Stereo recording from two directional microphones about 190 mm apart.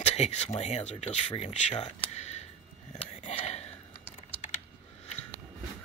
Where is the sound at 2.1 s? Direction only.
35° left (ahead or behind).